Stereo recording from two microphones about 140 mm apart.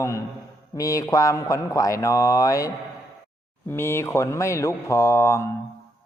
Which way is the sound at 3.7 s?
20° left (ahead or behind).